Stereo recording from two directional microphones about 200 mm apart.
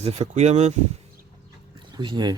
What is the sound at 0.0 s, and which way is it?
Speech, 30° right (ahead or behind).